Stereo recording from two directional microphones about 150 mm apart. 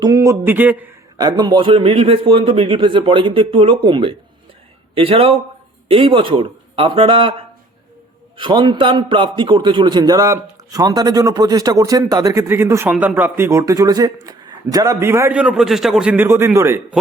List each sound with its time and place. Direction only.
0.0 s speech: 20° right (ahead or behind)
1.1 s a man's voice: 30° right (ahead or behind)
8.4 s a man's voice: 30° right (ahead or behind); by 17.0 s 15° right (ahead or behind)